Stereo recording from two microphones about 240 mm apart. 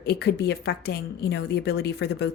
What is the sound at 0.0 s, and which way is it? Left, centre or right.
A woman's voice, left.